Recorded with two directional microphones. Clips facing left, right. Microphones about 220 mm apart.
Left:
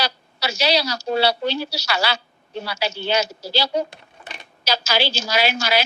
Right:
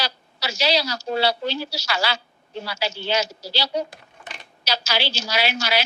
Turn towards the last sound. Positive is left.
turn(degrees=45)  # may be behind; listen again after turning